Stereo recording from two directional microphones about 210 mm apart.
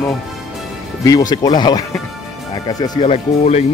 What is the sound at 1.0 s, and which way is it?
Speech, 20° left (ahead or behind).